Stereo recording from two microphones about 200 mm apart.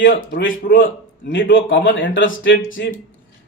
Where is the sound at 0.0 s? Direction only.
65° left (ahead or behind).